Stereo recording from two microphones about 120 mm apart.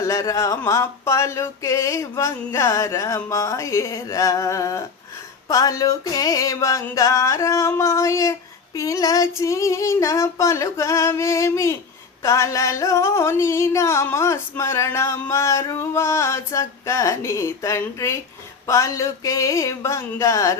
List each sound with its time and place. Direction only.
0.0 s music: 25° left (ahead or behind)